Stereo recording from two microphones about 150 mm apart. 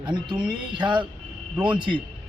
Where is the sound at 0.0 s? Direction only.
30° right (ahead or behind).